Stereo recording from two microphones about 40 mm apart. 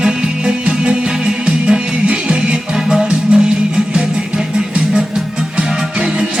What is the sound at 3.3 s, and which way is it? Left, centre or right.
Music, right.